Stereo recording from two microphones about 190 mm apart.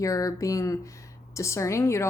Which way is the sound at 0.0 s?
15° left (ahead or behind).